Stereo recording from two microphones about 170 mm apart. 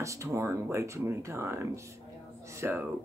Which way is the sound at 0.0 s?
20° right (ahead or behind).